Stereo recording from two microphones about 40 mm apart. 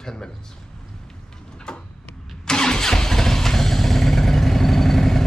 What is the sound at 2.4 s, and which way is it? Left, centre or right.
Vehicle, centre.